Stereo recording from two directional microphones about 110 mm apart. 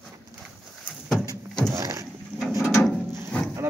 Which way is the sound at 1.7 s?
30° right (ahead or behind).